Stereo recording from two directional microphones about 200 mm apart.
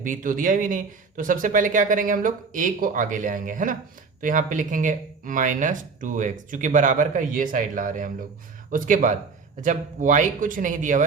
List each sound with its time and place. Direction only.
0.0 s speech: 40° right (ahead or behind)